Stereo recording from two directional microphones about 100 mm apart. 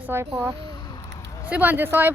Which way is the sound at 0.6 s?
40° left (ahead or behind).